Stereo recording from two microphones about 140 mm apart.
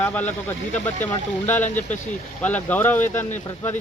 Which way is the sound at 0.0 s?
10° left (ahead or behind).